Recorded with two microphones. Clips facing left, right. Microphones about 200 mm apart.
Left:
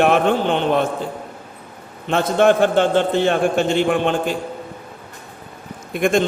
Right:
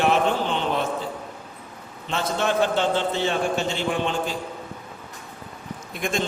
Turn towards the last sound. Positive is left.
turn(degrees=55)  # may be behind; listen again after turning